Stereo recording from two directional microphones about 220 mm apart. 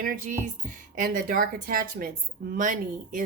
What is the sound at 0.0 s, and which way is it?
A woman's voice, 40° right (ahead or behind).